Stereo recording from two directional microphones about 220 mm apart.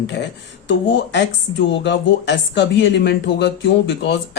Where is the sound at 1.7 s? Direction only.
55° left (ahead or behind).